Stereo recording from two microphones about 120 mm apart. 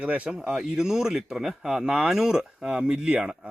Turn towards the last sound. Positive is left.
turn(degrees=-5)  # may be behind; listen again after turning